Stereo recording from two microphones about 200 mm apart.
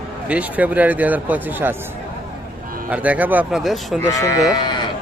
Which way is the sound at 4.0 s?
15° left (ahead or behind).